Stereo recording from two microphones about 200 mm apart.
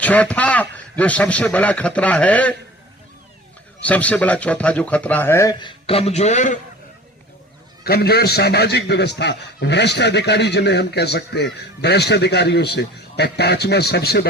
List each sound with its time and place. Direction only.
0.0 s a man's voice: 5° left (ahead or behind)
3.8 s a man's voice: 5° left (ahead or behind); by 6.6 s 35° left (ahead or behind)
7.9 s a man's voice: 50° left (ahead or behind)